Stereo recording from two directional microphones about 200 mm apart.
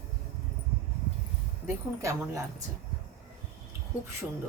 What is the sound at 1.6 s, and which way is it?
Speech, 15° right (ahead or behind).